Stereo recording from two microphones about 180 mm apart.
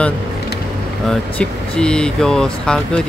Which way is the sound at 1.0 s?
5° left (ahead or behind).